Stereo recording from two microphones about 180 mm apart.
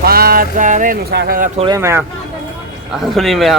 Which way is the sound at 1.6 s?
20° right (ahead or behind).